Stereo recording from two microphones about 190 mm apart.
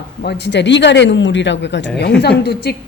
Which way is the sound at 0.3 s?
65° left (ahead or behind).